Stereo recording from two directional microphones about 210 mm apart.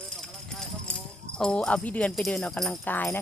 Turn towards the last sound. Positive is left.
turn(degrees=10)  # may be behind; listen again after turning